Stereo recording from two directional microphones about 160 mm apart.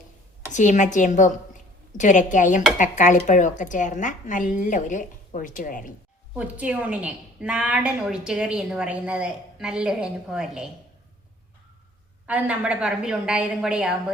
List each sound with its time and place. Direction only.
0.5 s a woman's voice: 50° left (ahead or behind)
6.3 s a woman's voice: 10° right (ahead or behind)
12.2 s a woman's voice: 10° right (ahead or behind)